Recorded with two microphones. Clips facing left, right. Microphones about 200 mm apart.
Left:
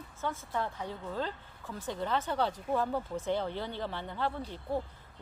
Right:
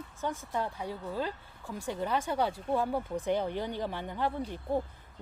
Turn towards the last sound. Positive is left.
turn(degrees=-15)  # may be behind; listen again after turning